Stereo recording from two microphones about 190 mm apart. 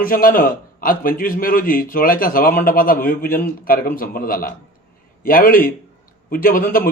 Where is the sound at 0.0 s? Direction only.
50° left (ahead or behind).